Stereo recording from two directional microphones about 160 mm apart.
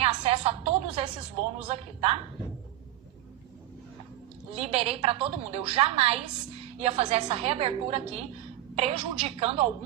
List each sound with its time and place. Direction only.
0.0 s music: 35° right (ahead or behind)
1.6 s a woman's voice: 40° right (ahead or behind)
4.5 s a woman's voice: 40° right (ahead or behind)